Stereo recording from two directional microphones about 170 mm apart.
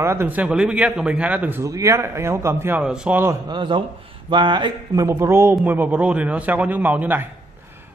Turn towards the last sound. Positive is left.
turn(degrees=-10)  # may be behind; listen again after turning